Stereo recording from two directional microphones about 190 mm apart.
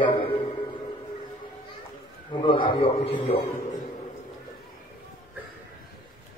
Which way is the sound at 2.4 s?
25° left (ahead or behind).